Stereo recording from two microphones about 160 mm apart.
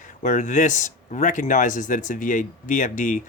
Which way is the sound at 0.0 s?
55° left (ahead or behind).